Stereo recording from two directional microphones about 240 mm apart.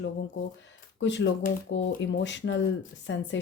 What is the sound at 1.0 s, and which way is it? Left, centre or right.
Speech, left.